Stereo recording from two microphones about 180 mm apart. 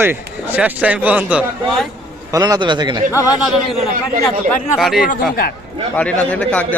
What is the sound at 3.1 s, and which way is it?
Speech, 20° left (ahead or behind).